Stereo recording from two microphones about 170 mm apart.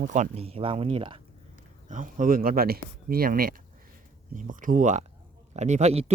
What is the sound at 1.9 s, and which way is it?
Speech, 50° right (ahead or behind).